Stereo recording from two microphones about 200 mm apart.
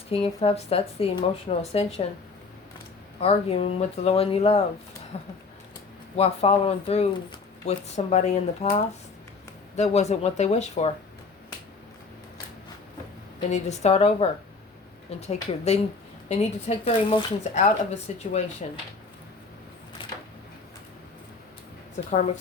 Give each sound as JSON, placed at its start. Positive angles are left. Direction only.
{"t": 0.1, "sound": "speech", "side_deg": 30}
{"t": 13.5, "sound": "speech", "side_deg": 35}
{"t": 15.3, "sound": "speech", "side_deg": 35}
{"t": 22.0, "sound": "a woman's voice", "side_deg": 40}